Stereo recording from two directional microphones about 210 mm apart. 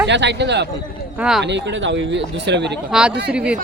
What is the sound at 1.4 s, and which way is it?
Speech, 55° right (ahead or behind).